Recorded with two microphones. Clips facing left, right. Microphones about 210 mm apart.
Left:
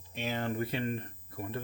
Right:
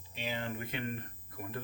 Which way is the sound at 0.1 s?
45° left (ahead or behind).